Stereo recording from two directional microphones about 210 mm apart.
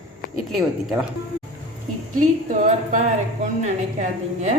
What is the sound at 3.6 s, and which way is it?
Speech, 35° right (ahead or behind).